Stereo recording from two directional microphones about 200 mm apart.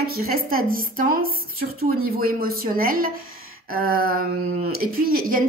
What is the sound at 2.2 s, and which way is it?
A woman's voice, 45° right (ahead or behind).